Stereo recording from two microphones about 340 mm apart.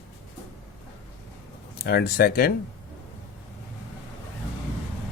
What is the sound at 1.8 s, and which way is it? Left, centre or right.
Speech, left.